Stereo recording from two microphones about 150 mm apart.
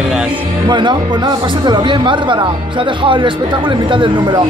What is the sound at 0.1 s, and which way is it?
Speech, 5° right (ahead or behind).